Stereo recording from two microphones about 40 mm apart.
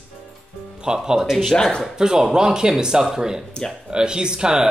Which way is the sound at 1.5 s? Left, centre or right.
Centre.